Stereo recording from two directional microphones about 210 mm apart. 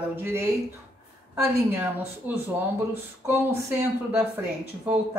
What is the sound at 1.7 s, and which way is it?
Speech, 10° right (ahead or behind).